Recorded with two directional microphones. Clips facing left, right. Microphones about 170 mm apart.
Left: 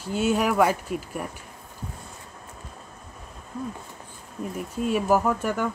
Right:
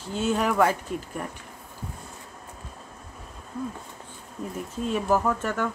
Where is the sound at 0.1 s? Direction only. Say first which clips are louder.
Left 2 dB; 10° left (ahead or behind).